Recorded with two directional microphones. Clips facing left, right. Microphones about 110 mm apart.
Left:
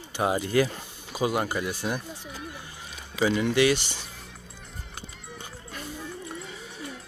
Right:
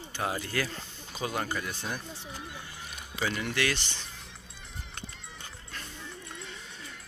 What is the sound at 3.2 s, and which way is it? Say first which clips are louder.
Speech: left 9 dB; 15° left (ahead or behind).